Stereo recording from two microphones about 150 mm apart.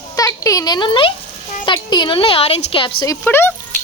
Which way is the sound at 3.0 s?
15° left (ahead or behind).